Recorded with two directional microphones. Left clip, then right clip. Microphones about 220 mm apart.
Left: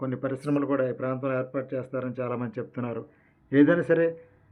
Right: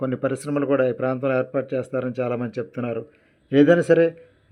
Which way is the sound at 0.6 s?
35° right (ahead or behind).